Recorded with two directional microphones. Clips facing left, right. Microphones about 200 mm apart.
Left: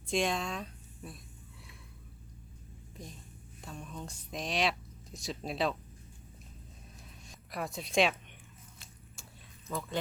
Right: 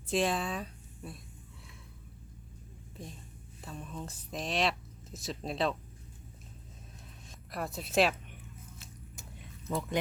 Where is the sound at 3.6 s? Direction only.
Centre (ahead or behind).